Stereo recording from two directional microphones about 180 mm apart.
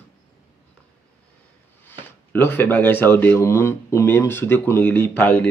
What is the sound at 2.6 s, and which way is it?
Speech, 10° left (ahead or behind).